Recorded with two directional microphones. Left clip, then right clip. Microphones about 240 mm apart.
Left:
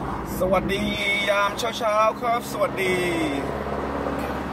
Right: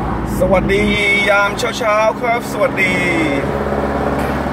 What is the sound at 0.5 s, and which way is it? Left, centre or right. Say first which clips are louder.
Speech: right 9 dB; centre.